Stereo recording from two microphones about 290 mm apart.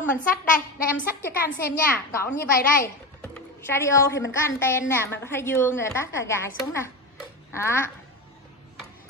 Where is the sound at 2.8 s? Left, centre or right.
Centre.